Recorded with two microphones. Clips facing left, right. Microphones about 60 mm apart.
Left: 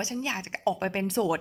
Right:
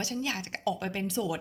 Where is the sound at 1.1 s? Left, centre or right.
Left.